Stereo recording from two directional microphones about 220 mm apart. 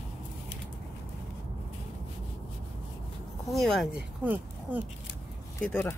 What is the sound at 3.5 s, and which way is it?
Speech, centre (ahead or behind).